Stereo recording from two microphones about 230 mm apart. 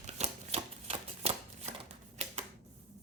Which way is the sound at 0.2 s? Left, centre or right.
Right.